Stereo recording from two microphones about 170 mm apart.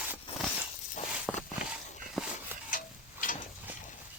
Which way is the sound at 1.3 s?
Centre (ahead or behind).